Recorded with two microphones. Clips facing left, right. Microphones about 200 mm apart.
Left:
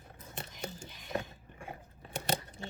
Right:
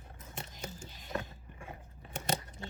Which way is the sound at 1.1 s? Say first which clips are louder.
Left 2 dB; 30° left (ahead or behind).